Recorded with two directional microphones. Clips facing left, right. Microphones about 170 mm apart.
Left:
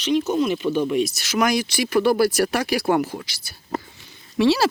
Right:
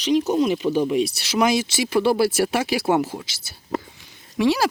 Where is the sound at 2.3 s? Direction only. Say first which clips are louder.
Even; 5° right (ahead or behind).